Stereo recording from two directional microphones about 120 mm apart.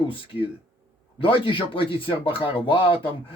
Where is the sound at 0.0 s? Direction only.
45° left (ahead or behind).